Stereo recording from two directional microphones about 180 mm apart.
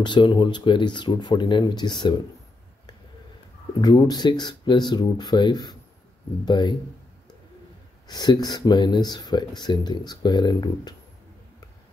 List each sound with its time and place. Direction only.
0.0 s speech: 25° left (ahead or behind)
3.8 s speech: 25° left (ahead or behind)
8.1 s speech: 25° left (ahead or behind)